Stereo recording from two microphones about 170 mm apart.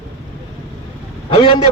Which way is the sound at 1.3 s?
30° left (ahead or behind).